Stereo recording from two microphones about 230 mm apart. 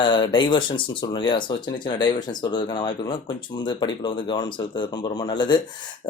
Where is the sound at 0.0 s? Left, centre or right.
Centre.